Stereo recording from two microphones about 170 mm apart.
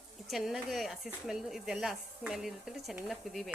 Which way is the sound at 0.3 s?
Centre (ahead or behind).